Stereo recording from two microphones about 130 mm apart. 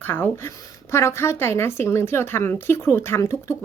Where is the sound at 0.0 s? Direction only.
15° left (ahead or behind).